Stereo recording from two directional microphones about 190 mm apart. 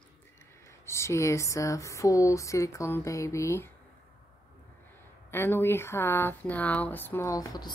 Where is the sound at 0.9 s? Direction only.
15° left (ahead or behind).